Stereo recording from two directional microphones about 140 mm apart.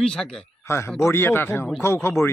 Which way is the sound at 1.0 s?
20° left (ahead or behind).